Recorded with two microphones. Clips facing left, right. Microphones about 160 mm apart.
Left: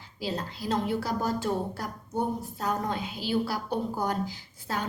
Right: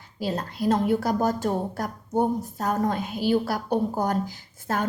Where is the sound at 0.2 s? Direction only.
50° right (ahead or behind).